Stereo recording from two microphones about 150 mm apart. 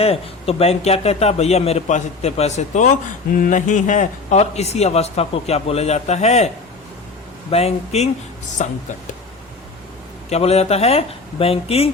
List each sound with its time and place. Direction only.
0.0 s speech: 40° left (ahead or behind)
7.5 s speech: 45° left (ahead or behind)
10.2 s speech: 45° left (ahead or behind)